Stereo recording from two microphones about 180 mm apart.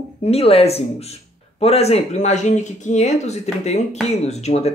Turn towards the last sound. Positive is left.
turn(degrees=35)  # may be behind; listen again after turning